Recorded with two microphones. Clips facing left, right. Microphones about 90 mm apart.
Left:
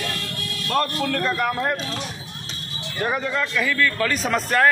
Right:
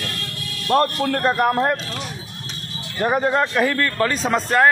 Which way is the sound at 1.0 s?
45° right (ahead or behind).